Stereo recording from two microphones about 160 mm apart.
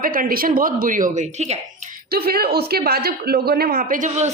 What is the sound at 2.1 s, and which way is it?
Speech, 75° right (ahead or behind).